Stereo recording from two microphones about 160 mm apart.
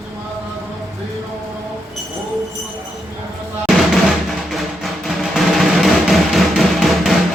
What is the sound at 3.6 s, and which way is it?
Music, centre (ahead or behind).